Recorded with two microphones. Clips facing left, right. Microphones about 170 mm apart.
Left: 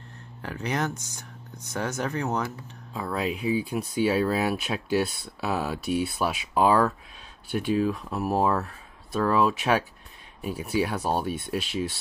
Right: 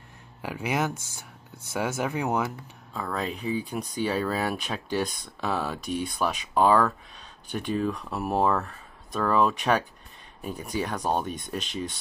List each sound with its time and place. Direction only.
0.4 s speech: 10° right (ahead or behind)
2.9 s speech: 10° left (ahead or behind)